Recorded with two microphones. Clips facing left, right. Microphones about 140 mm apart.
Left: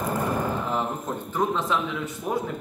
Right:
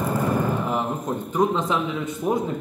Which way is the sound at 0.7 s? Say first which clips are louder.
Right 3 dB; 15° right (ahead or behind).